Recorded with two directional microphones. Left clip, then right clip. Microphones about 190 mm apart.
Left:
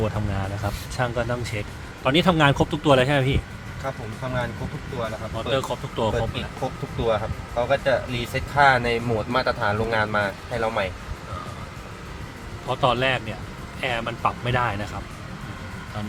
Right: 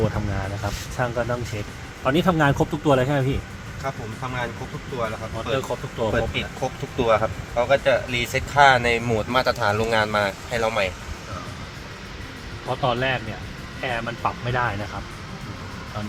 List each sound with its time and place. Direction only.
0.0 s speech: 5° right (ahead or behind)
5.5 s speech: 5° right (ahead or behind)
6.6 s speech: 40° right (ahead or behind); by 10.8 s 70° right (ahead or behind)
12.6 s speech: 5° left (ahead or behind)